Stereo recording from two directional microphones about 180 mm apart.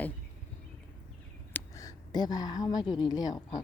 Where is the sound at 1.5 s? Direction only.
20° left (ahead or behind).